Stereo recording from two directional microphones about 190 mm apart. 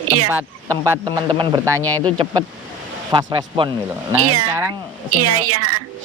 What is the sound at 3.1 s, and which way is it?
Speech, 25° right (ahead or behind).